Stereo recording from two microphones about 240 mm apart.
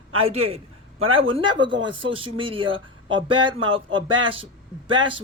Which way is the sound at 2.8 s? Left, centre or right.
Right.